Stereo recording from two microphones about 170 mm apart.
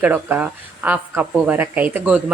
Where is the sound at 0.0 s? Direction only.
10° right (ahead or behind).